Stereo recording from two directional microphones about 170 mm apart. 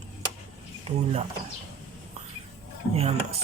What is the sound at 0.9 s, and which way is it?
Speech, 40° right (ahead or behind).